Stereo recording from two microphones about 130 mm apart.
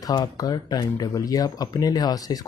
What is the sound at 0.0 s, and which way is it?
Speech, 30° left (ahead or behind).